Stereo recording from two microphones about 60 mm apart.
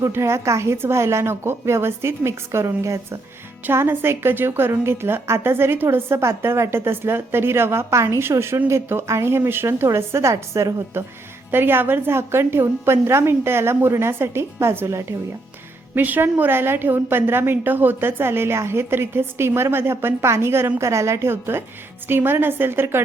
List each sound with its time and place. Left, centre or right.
0.1 s a woman's voice: right
3.7 s a woman's voice: right
11.5 s a woman's voice: right
16.0 s a woman's voice: right